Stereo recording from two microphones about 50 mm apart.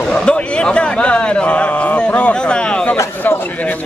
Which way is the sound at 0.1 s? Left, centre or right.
Centre.